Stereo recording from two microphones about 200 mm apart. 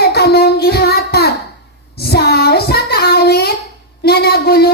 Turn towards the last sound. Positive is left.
turn(degrees=50)  # may be behind; listen again after turning